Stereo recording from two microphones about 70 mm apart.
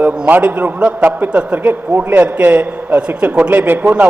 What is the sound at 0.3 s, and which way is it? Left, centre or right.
A man's voice, right.